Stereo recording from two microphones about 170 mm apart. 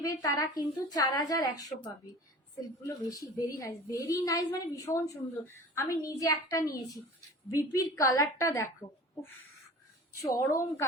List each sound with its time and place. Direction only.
0.0 s a woman's voice: 20° left (ahead or behind)
2.8 s a woman's voice: 20° left (ahead or behind)
10.2 s a woman's voice: 20° left (ahead or behind)